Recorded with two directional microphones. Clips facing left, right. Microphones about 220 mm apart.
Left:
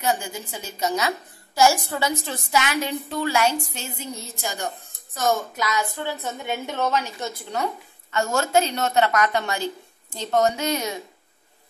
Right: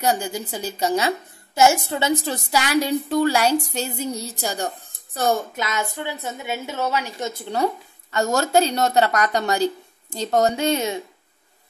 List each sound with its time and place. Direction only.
0.0 s a woman's voice: 35° right (ahead or behind)
2.2 s a woman's voice: 35° right (ahead or behind)
6.0 s a woman's voice: 10° right (ahead or behind)
7.5 s a woman's voice: 35° right (ahead or behind)